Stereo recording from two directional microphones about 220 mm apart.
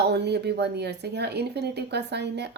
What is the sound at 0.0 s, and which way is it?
Speech, 50° right (ahead or behind).